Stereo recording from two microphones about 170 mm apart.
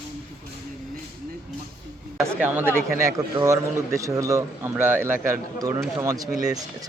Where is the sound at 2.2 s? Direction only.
10° right (ahead or behind).